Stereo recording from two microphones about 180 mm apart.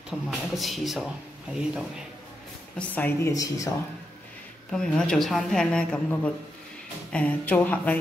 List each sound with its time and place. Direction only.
0.1 s speech: centre (ahead or behind)
2.8 s speech: 10° left (ahead or behind)
4.7 s speech: 5° left (ahead or behind)